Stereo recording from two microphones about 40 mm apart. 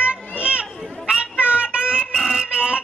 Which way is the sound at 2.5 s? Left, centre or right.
Right.